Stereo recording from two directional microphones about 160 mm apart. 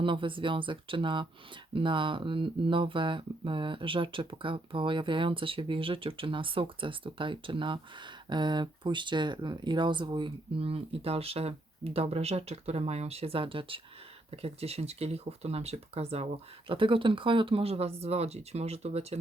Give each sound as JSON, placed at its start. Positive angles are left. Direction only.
{"t": 0.0, "sound": "speech", "side_deg": -30}